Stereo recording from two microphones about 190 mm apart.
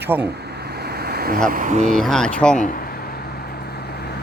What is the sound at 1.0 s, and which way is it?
Vehicle, 55° right (ahead or behind).